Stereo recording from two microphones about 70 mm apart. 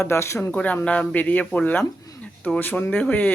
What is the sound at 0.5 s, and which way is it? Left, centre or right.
A man's voice, left.